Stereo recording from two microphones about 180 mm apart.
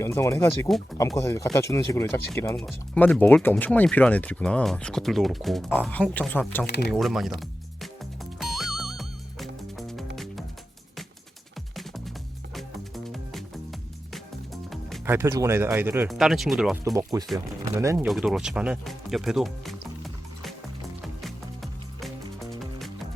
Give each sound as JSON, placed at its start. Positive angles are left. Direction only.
{"t": 0.0, "sound": "speech", "side_deg": 15}
{"t": 6.7, "sound": "speech", "side_deg": 65}
{"t": 6.9, "sound": "music", "side_deg": 0}
{"t": 11.8, "sound": "music", "side_deg": 0}
{"t": 15.0, "sound": "speech", "side_deg": -15}
{"t": 16.0, "sound": "speech", "side_deg": 0}
{"t": 16.8, "sound": "speech", "side_deg": -20}
{"t": 18.0, "sound": "speech", "side_deg": 0}
{"t": 21.2, "sound": "music", "side_deg": 0}